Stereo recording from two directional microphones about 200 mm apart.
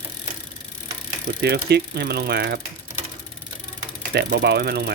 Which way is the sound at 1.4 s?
55° right (ahead or behind).